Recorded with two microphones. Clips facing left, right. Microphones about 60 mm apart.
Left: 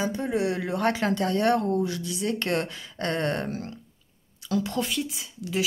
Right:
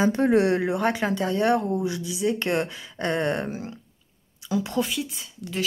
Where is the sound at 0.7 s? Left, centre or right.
Centre.